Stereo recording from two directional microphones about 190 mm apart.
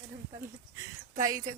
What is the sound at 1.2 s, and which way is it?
Speech, 20° right (ahead or behind).